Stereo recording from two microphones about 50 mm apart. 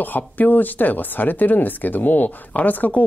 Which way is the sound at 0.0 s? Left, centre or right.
Left.